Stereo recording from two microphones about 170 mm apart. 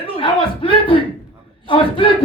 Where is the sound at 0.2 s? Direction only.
30° left (ahead or behind).